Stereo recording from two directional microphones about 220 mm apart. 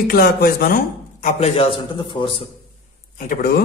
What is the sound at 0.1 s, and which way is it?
Speech, 45° left (ahead or behind).